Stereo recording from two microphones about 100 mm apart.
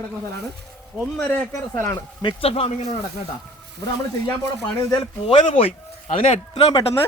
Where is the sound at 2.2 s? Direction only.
75° left (ahead or behind).